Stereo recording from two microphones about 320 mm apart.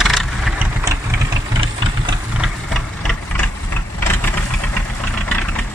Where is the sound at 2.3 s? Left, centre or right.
Centre.